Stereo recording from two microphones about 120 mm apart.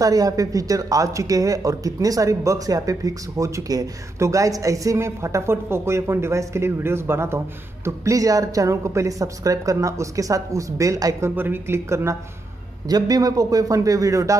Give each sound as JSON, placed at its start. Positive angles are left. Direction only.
{"t": 0.0, "sound": "speech", "side_deg": -30}
{"t": 12.8, "sound": "speech", "side_deg": -30}